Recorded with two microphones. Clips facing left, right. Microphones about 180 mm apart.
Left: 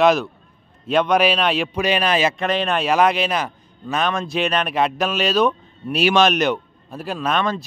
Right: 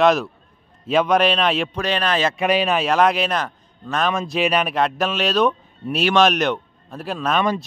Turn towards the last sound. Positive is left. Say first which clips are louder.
# right 1 dB
turn(degrees=0)  # may be behind; listen again after turning